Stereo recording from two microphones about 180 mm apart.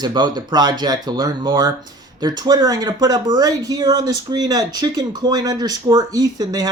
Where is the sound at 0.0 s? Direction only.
25° right (ahead or behind).